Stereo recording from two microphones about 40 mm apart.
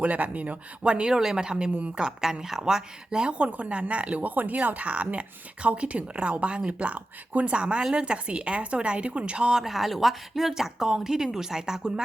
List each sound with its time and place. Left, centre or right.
0.0 s speech: right
4.2 s speech: right
9.5 s speech: centre
9.7 s speech: centre